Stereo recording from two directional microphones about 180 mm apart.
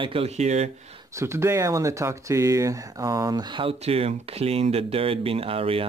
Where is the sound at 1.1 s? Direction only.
15° right (ahead or behind).